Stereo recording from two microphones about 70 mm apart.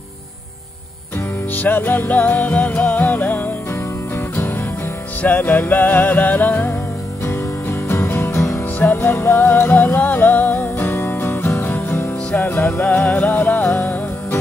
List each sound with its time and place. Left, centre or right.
1.5 s music: left
5.2 s music: left
7.9 s music: left
8.7 s music: left